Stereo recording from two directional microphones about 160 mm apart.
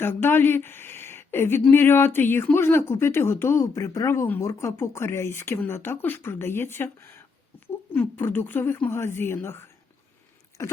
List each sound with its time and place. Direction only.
0.0 s speech: 15° left (ahead or behind)